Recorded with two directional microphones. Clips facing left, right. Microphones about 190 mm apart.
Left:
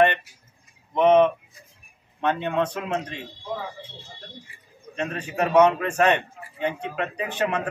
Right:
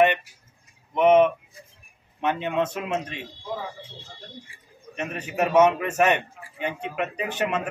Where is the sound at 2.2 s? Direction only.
15° right (ahead or behind).